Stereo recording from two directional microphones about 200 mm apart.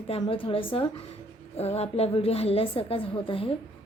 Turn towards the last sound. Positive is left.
turn(degrees=25)  # may be behind; listen again after turning